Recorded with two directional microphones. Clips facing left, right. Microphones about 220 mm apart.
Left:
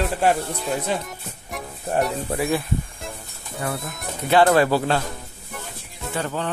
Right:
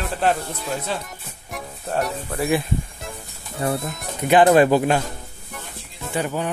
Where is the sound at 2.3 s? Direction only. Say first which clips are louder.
Even; 25° left (ahead or behind).